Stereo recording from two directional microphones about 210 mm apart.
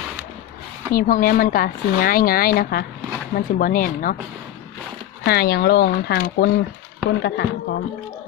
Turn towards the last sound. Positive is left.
turn(degrees=50)  # may be behind; listen again after turning